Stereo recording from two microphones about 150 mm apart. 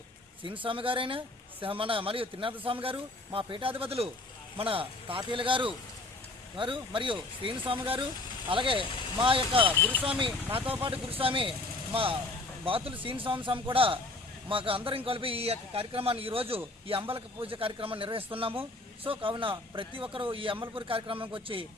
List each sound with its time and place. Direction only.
0.4 s speech: 35° right (ahead or behind)
12.6 s speech: 35° right (ahead or behind)